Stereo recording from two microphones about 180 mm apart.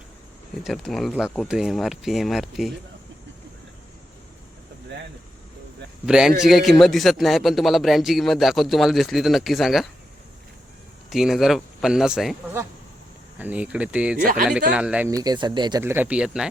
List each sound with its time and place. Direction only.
0.6 s speech: centre (ahead or behind)
6.1 s speech: 5° right (ahead or behind)
11.1 s speech: centre (ahead or behind)
13.4 s speech: 10° right (ahead or behind)
14.2 s speech: 50° right (ahead or behind)
14.7 s speech: 5° right (ahead or behind)
15.1 s speech: 20° right (ahead or behind)
15.8 s speech: 10° right (ahead or behind)